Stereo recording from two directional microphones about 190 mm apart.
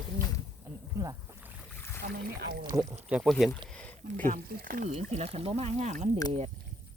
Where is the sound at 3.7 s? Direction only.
10° left (ahead or behind).